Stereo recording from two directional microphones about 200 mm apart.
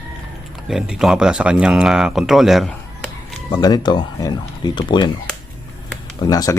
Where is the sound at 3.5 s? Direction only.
20° left (ahead or behind).